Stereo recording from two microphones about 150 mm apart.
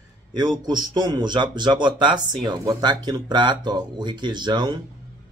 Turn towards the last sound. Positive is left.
turn(degrees=-30)  # may be behind; listen again after turning